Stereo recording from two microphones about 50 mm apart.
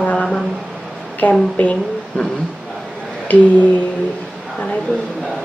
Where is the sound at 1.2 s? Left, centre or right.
Left.